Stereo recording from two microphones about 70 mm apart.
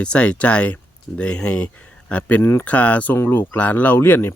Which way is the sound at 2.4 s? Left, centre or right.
Left.